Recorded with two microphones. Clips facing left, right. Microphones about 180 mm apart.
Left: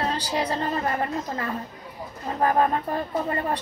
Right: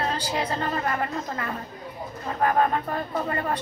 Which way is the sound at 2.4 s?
30° left (ahead or behind).